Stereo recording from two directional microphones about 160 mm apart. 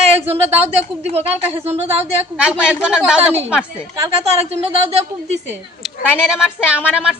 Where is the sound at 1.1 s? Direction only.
40° right (ahead or behind).